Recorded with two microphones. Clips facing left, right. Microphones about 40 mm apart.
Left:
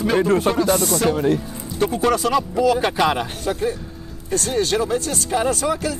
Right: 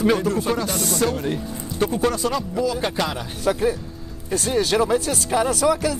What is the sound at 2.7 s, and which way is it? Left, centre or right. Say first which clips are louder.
Speech: left 3 dB; centre.